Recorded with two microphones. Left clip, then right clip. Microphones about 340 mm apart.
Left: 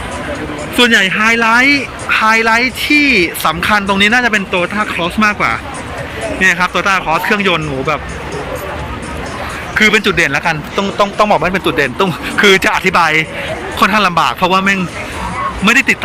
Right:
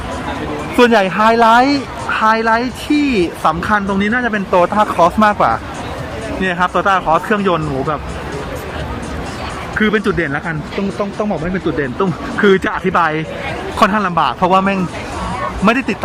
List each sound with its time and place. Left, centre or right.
0.9 s speech: right
1.2 s speech: centre
4.5 s speech: centre
9.7 s speech: centre
11.0 s speech: left
11.9 s speech: centre